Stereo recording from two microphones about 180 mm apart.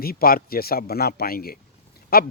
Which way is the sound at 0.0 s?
55° left (ahead or behind).